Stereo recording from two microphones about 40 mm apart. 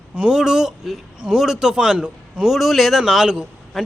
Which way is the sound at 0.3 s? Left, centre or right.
Centre.